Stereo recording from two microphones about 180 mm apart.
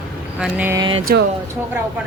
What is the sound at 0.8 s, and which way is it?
Speech, 25° right (ahead or behind).